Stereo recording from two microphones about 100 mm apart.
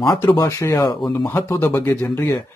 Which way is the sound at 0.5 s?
25° left (ahead or behind).